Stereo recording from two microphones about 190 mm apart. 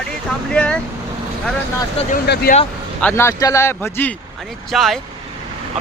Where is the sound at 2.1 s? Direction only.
50° left (ahead or behind).